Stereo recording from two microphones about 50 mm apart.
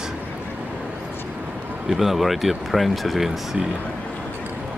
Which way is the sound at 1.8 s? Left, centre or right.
Centre.